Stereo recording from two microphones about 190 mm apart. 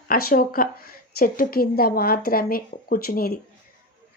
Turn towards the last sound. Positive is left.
turn(degrees=50)  # may be behind; listen again after turning